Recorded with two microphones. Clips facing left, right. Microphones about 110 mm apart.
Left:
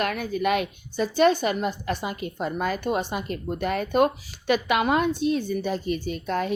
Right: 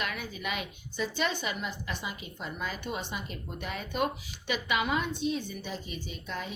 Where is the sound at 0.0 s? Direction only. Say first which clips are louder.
Left 11 dB; 50° left (ahead or behind).